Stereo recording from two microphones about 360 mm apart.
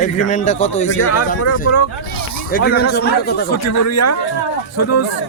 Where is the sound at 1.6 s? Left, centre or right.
Left.